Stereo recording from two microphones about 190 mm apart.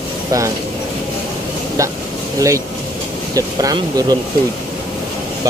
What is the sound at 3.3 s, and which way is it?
Speech, 20° right (ahead or behind).